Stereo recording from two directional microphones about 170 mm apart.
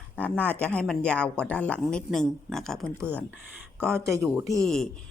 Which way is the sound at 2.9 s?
15° right (ahead or behind).